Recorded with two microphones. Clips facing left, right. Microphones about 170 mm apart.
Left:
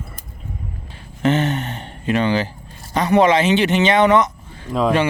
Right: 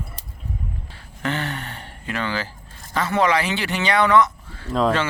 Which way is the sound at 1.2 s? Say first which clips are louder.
Left 8 dB; 20° left (ahead or behind).